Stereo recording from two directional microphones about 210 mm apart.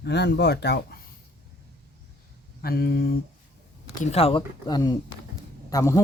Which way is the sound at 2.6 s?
45° left (ahead or behind).